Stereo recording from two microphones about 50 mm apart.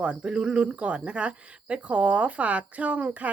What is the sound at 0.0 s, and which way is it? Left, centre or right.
Speech, right.